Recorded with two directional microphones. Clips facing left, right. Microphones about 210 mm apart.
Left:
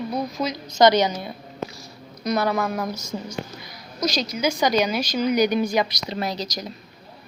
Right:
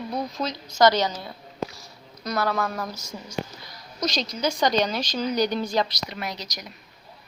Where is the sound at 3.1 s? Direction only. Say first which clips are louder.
Left 7 dB; 30° left (ahead or behind).